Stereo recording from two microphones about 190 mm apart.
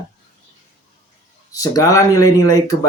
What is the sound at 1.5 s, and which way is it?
Speech, 15° left (ahead or behind).